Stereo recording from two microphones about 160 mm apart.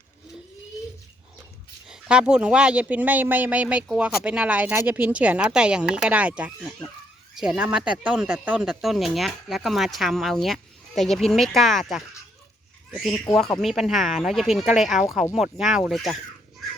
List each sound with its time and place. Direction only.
1.9 s speech: 5° right (ahead or behind)